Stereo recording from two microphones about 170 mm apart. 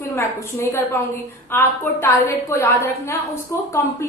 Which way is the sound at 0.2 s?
15° left (ahead or behind).